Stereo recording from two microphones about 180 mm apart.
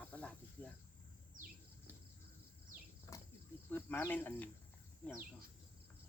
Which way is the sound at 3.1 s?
15° left (ahead or behind).